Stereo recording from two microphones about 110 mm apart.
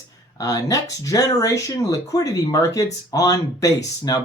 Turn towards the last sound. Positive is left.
turn(degrees=35)  # may be behind; listen again after turning